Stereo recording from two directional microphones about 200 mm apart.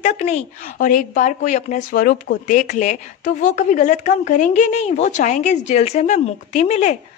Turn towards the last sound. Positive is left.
turn(degrees=35)  # may be behind; listen again after turning